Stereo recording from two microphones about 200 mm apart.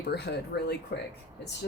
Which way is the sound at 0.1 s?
55° left (ahead or behind).